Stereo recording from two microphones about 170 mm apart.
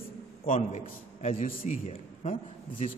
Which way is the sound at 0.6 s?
45° left (ahead or behind).